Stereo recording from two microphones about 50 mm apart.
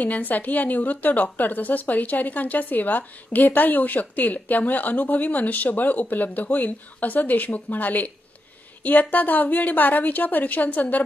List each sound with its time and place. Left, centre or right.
0.0 s a woman's voice: left